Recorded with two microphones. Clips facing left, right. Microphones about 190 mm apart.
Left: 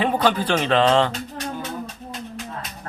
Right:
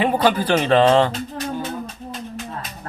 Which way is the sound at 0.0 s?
10° right (ahead or behind).